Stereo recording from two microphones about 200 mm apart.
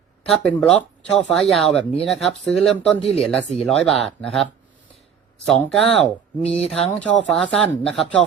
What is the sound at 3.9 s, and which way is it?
Speech, centre (ahead or behind).